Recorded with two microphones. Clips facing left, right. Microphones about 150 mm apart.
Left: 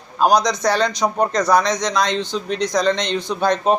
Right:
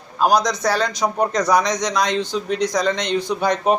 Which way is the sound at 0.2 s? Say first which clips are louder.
Left 1 dB; 5° right (ahead or behind).